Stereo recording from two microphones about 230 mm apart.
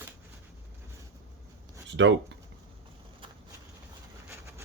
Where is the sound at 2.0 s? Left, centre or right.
Right.